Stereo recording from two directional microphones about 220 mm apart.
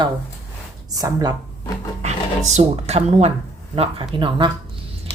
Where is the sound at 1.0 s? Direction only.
15° right (ahead or behind).